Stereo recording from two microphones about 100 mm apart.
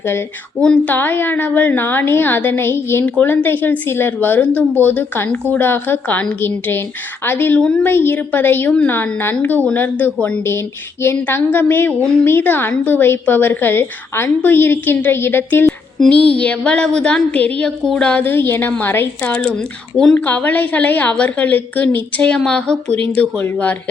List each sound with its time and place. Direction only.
0.6 s a woman's voice: 10° left (ahead or behind)
0.9 s a woman's voice: 20° left (ahead or behind)
7.6 s a woman's voice: 5° left (ahead or behind)
7.9 s a woman's voice: 20° left (ahead or behind)
11.0 s a woman's voice: 25° left (ahead or behind)
16.0 s a woman's voice: 10° left (ahead or behind)
20.1 s a woman's voice: 20° left (ahead or behind)